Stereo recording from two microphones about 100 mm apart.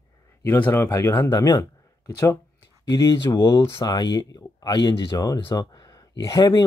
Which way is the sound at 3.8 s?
40° left (ahead or behind).